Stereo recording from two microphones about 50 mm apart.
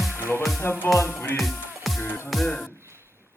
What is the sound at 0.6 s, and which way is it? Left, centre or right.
Speech, left.